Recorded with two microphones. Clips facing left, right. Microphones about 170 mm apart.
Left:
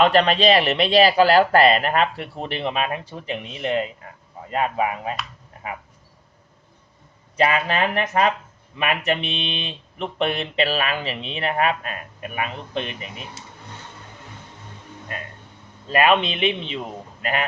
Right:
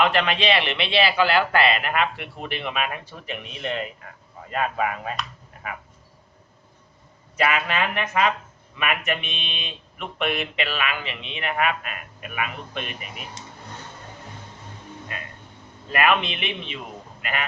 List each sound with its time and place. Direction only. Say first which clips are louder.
0.0 s speech: left 5 dB; 35° left (ahead or behind)
7.3 s speech: left 3 dB; 35° left (ahead or behind)
13.4 s speech: right 1 dB; 5° left (ahead or behind)
15.9 s speech: left 4 dB; 30° left (ahead or behind)